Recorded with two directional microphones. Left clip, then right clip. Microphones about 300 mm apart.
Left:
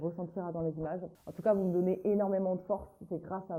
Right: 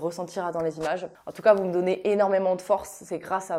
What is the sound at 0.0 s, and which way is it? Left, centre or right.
A woman's voice, centre.